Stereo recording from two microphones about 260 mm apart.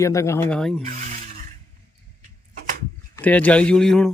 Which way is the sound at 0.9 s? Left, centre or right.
Right.